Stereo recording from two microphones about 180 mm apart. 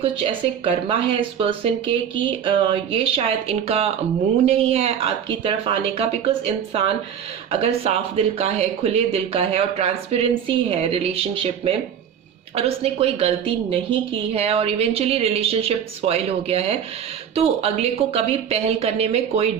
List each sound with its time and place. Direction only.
0.0 s a woman's voice: 30° right (ahead or behind)